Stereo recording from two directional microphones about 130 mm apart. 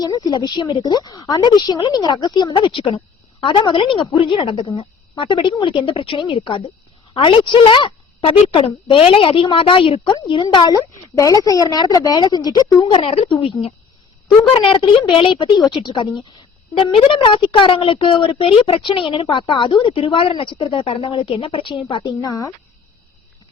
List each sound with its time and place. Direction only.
0.0 s a woman's voice: 25° left (ahead or behind)
12.9 s a woman's voice: 45° left (ahead or behind)
14.5 s a woman's voice: 40° left (ahead or behind)
17.1 s a woman's voice: 40° left (ahead or behind)
22.0 s a woman's voice: 25° left (ahead or behind)